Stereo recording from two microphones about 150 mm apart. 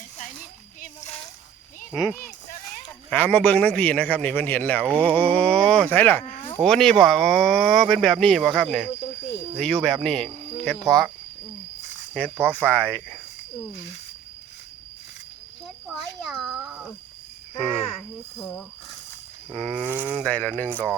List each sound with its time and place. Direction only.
2.0 s a man's voice: 15° left (ahead or behind)
12.1 s a man's voice: 10° left (ahead or behind)
16.0 s a sound: centre (ahead or behind)
18.3 s a man's voice: 15° left (ahead or behind)
19.5 s speech: centre (ahead or behind)
19.7 s speech: 10° right (ahead or behind)
20.2 s a man's voice: 10° left (ahead or behind)